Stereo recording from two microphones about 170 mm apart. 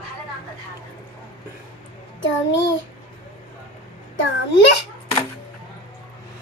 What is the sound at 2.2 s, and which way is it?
Speech, 90° left.